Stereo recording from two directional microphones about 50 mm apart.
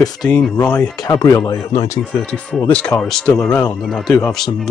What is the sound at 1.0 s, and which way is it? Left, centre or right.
Speech, left.